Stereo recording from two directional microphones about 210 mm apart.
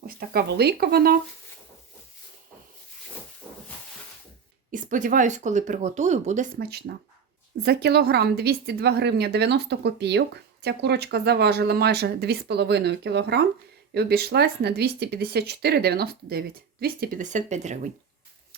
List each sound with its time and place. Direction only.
0.2 s a woman's voice: 50° right (ahead or behind)
4.7 s a woman's voice: 40° right (ahead or behind)